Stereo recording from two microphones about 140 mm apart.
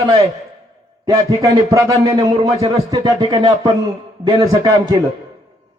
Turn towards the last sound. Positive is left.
turn(degrees=-30)  # may be behind; listen again after turning